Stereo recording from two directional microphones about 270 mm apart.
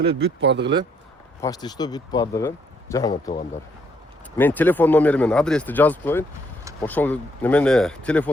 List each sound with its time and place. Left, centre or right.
0.0 s speech: right
1.4 s speech: centre